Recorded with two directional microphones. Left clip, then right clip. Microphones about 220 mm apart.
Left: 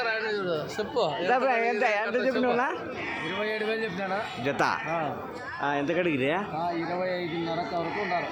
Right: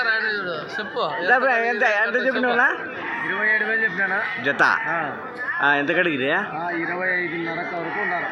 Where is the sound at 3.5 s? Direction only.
20° left (ahead or behind).